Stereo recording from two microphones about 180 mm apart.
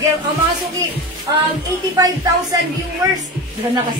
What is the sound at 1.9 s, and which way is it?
Speech, 20° right (ahead or behind).